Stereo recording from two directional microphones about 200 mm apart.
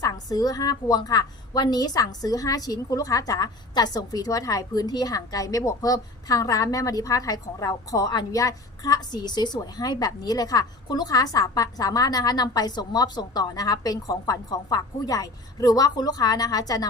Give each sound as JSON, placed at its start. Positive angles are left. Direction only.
{"t": 0.0, "sound": "a woman's voice", "side_deg": 20}